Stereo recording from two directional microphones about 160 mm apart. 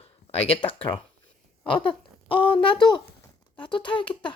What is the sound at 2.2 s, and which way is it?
Speech, 30° left (ahead or behind).